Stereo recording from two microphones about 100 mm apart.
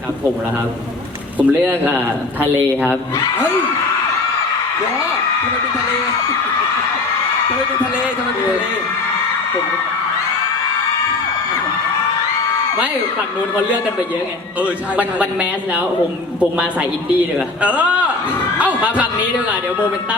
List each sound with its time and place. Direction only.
1.4 s speech: 20° right (ahead or behind)
14.6 s a man's voice: 15° right (ahead or behind)
17.6 s a man's voice: 15° right (ahead or behind)